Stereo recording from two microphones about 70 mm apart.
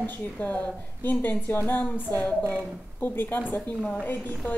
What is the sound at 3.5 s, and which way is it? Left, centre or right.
Speech, centre.